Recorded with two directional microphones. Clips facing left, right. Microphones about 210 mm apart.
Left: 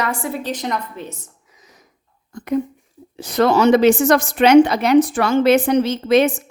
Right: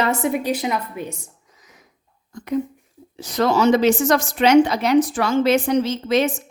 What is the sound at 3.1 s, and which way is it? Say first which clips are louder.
Speech: left 3 dB; 60° left (ahead or behind).